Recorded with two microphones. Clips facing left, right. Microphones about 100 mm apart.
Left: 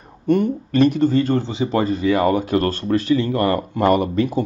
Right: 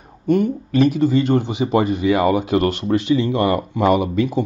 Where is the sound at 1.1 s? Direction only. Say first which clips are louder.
Right 1 dB; 15° right (ahead or behind).